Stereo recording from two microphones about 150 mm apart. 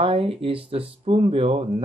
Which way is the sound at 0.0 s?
40° right (ahead or behind).